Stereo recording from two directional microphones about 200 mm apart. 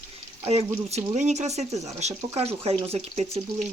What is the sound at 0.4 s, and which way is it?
Speech, 30° right (ahead or behind).